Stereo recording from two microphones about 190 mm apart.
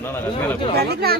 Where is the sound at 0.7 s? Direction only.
55° right (ahead or behind).